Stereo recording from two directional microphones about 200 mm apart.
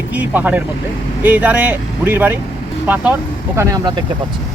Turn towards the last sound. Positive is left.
turn(degrees=-20)  # may be behind; listen again after turning